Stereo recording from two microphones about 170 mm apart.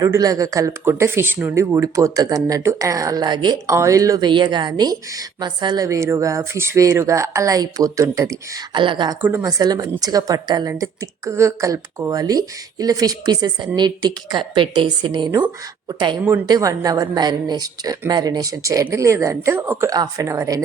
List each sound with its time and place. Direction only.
0.0 s speech: 20° right (ahead or behind)
9.2 s speech: 15° right (ahead or behind)